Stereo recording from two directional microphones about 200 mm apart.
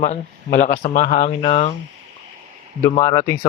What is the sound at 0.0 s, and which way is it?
Speech, 40° left (ahead or behind).